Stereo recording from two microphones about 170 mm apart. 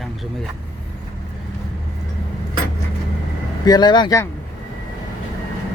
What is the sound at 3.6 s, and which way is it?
Speech, 25° left (ahead or behind).